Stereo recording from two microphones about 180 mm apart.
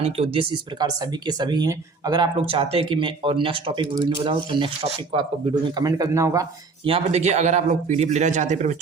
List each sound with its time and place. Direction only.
0.0 s speech: 30° right (ahead or behind)
6.8 s a man's voice: 35° right (ahead or behind)